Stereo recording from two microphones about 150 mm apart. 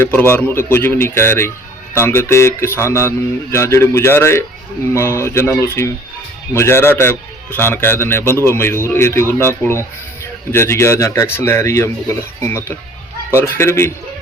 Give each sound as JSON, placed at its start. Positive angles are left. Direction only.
{"t": 0.0, "sound": "a man's voice", "side_deg": 15}